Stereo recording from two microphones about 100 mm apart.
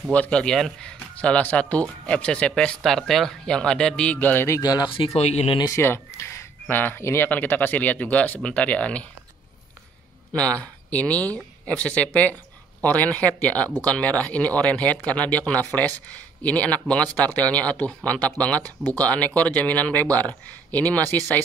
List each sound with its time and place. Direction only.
0.1 s speech: 10° left (ahead or behind)
4.6 s speech: 40° left (ahead or behind)
4.8 s speech: 60° left (ahead or behind); by 5.6 s 90° left
5.8 s speech: 25° left (ahead or behind)
10.3 s speech: 10° left (ahead or behind)